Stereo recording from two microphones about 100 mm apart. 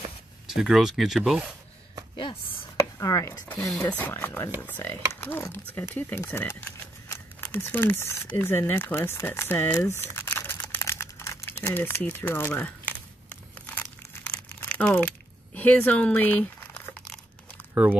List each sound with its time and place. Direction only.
0.6 s speech: 5° right (ahead or behind)
2.1 s speech: 60° left (ahead or behind)
2.8 s speech: 35° left (ahead or behind)
3.8 s speech: 20° left (ahead or behind)
13.6 s crumpling: 15° left (ahead or behind)